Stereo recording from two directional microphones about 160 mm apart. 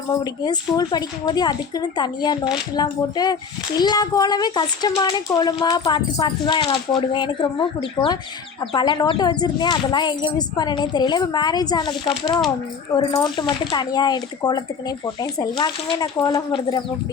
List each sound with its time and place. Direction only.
0.4 s speech: 25° left (ahead or behind)